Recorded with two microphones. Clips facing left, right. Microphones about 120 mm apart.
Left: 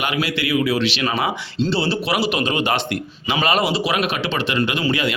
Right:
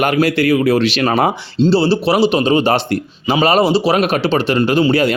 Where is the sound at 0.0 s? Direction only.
45° right (ahead or behind).